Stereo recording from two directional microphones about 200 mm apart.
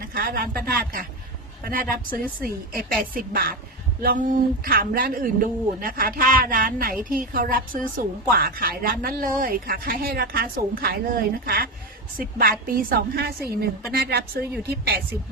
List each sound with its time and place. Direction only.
0.0 s a woman's voice: 45° right (ahead or behind)